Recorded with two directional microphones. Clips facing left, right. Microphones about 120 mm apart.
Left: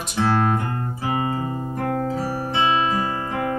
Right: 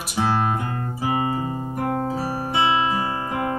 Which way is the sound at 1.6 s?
20° right (ahead or behind).